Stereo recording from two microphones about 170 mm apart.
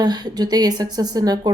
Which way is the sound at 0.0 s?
25° right (ahead or behind).